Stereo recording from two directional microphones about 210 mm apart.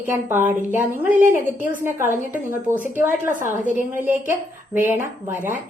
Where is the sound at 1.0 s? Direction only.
40° right (ahead or behind).